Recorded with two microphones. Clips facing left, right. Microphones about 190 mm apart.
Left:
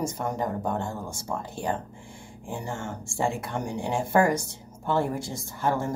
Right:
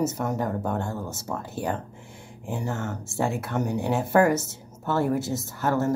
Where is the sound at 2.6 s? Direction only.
10° left (ahead or behind).